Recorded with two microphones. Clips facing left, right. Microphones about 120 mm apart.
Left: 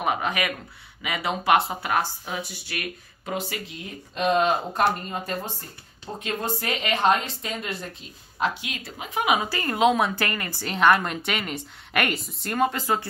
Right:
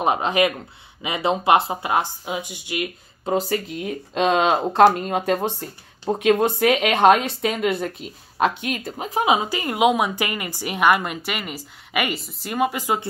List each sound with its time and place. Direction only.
0.0 s speech: 25° right (ahead or behind)
3.3 s speech: 40° right (ahead or behind)
4.1 s a woman's voice: 90° right; by 13.0 s 15° right (ahead or behind)